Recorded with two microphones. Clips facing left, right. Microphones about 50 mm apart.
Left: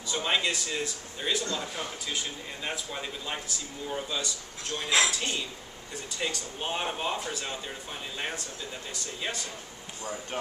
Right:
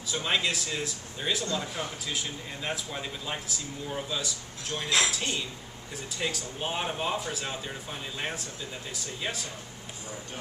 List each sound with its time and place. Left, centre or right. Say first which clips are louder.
0.1 s speech: even; centre
4.8 s a woman's voice: left 1 dB; centre
6.1 s speech: right 1 dB; centre